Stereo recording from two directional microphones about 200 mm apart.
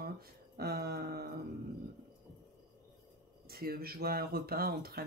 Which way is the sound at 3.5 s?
50° right (ahead or behind).